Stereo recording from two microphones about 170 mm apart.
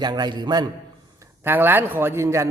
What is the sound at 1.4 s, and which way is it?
Speech, 10° right (ahead or behind).